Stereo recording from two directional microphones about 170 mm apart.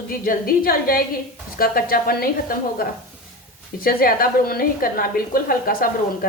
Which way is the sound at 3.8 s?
60° left (ahead or behind).